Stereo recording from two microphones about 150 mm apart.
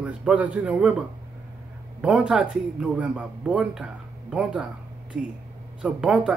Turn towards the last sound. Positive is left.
turn(degrees=-5)  # may be behind; listen again after turning